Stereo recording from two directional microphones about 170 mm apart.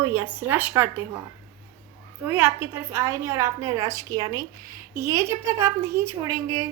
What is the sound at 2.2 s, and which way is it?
A woman's voice, 10° right (ahead or behind).